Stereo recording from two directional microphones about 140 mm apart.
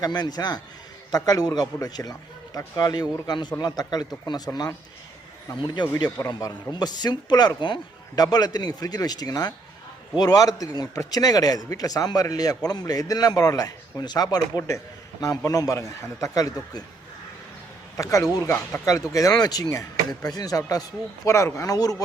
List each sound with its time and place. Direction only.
0.0 s a man's voice: 30° left (ahead or behind)
17.9 s speech: 25° left (ahead or behind)